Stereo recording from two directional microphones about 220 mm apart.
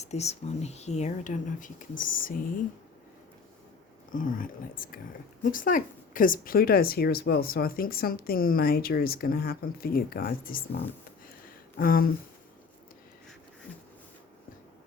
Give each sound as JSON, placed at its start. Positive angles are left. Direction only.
{"t": 0.0, "sound": "speech", "side_deg": 30}
{"t": 4.1, "sound": "speech", "side_deg": 40}
{"t": 11.8, "sound": "speech", "side_deg": 40}